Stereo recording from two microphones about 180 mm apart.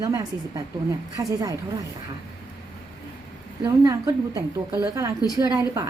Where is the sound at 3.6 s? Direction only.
15° right (ahead or behind).